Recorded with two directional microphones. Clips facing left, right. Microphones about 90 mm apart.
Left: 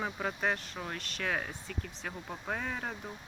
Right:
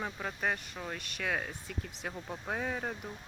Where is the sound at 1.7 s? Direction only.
15° right (ahead or behind).